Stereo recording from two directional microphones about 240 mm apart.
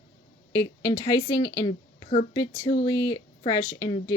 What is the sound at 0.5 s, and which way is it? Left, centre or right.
A woman's voice, centre.